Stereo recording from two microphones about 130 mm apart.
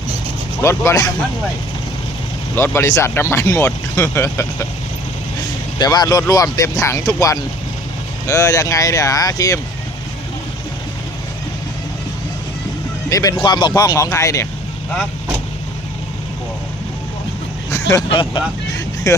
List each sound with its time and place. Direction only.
0.6 s speech: 20° left (ahead or behind)
2.6 s speech: 20° left (ahead or behind)
5.8 s speech: 30° left (ahead or behind)
13.1 s speech: 25° left (ahead or behind)
13.4 s speech: 35° left (ahead or behind)
17.7 s vehicle: 25° left (ahead or behind)
18.1 s speech: 40° left (ahead or behind)
19.1 s speech: 25° left (ahead or behind)